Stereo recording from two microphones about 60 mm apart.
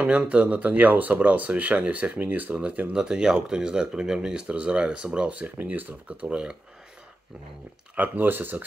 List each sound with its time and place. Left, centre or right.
0.0 s speech: centre
2.9 s speech: centre
6.2 s speech: centre
7.9 s speech: right